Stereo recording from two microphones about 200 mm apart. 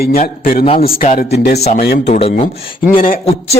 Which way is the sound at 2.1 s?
30° left (ahead or behind).